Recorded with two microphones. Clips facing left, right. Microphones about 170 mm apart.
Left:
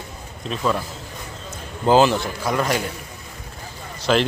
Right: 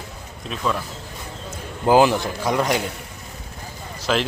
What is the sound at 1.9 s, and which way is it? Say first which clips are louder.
Speech: even; 15° right (ahead or behind).